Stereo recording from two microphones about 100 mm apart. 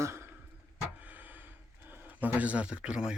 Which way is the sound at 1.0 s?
15° right (ahead or behind).